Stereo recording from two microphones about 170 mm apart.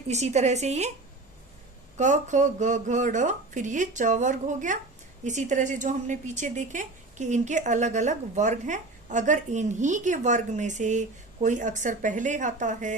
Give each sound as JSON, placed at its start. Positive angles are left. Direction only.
{"t": 0.1, "sound": "a woman's voice", "side_deg": -40}
{"t": 2.0, "sound": "a woman's voice", "side_deg": -45}